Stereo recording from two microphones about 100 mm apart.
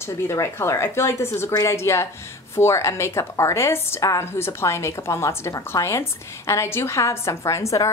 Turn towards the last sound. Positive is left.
turn(degrees=30)  # may be behind; listen again after turning